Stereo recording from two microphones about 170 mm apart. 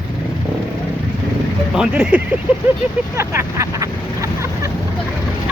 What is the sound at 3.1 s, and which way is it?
Vehicle, 15° right (ahead or behind).